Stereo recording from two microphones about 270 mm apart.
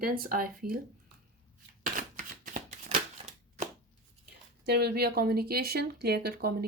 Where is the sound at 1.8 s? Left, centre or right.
Right.